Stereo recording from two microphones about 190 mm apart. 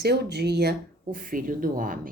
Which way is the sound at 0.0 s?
60° right (ahead or behind).